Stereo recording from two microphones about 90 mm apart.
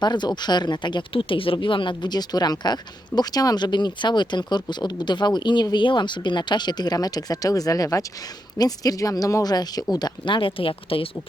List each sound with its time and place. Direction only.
0.0 s speech: 55° left (ahead or behind); by 1.5 s 80° left
1.5 s speech: 65° left (ahead or behind); by 11.1 s 90° left